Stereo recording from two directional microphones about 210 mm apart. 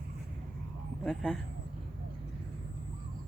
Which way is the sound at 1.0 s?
5° left (ahead or behind).